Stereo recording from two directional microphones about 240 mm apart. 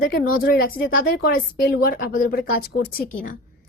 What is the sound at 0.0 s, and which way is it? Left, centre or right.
Speech, left.